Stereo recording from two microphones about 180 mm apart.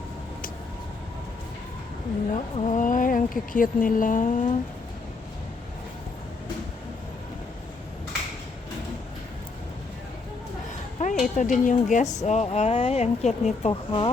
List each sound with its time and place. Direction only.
2.3 s speech: 40° left (ahead or behind)
11.0 s a sound: 40° left (ahead or behind)
11.3 s speech: 45° left (ahead or behind)